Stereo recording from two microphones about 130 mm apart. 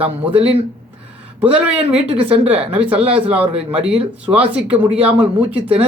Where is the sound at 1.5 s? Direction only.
10° right (ahead or behind).